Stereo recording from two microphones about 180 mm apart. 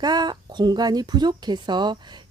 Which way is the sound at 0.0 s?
25° right (ahead or behind).